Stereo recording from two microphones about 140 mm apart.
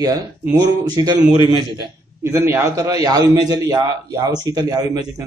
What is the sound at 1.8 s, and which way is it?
A man's voice, 20° right (ahead or behind).